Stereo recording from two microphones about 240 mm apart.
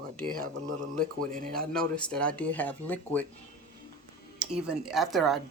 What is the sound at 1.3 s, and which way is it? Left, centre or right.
Speech, right.